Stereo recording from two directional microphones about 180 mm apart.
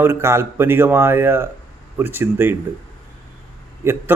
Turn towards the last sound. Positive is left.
turn(degrees=-15)  # may be behind; listen again after turning